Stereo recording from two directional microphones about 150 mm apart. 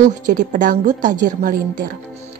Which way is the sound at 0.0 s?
60° right (ahead or behind).